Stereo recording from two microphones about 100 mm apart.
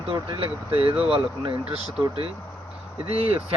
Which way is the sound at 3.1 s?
80° right.